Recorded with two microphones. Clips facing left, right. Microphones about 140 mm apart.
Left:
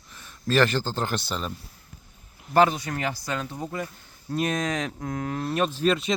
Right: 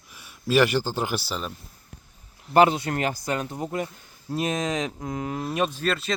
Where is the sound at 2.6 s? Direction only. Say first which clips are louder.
Right 2 dB; 25° right (ahead or behind).